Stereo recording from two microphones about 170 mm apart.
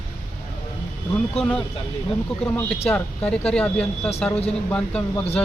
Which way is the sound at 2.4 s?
5° left (ahead or behind).